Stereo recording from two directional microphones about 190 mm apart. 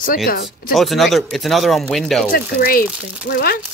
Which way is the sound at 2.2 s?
50° left (ahead or behind).